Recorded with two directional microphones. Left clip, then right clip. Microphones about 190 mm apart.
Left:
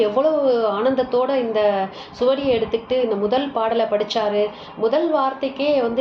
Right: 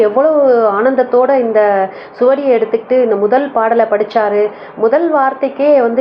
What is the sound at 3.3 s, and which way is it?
A woman's voice, 5° right (ahead or behind).